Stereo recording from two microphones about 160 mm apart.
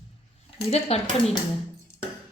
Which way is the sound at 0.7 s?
40° left (ahead or behind).